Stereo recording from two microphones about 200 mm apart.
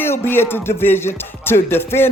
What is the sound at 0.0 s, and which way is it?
Speech, 10° left (ahead or behind).